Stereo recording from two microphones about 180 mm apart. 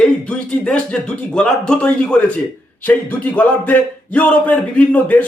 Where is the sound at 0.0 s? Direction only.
5° left (ahead or behind).